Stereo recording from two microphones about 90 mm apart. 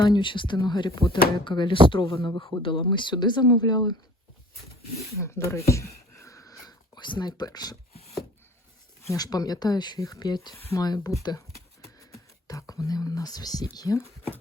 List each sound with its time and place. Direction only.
0.0 s speech: 60° left (ahead or behind)
1.9 s a man's voice: 75° left (ahead or behind); by 3.9 s 50° left (ahead or behind)
5.1 s a sound: 30° left (ahead or behind); by 8.2 s 45° left (ahead or behind)
9.0 s speech: 45° left (ahead or behind)
12.5 s speech: 40° left (ahead or behind)